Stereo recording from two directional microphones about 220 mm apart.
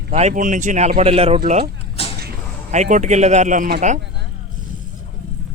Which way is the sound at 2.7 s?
35° right (ahead or behind).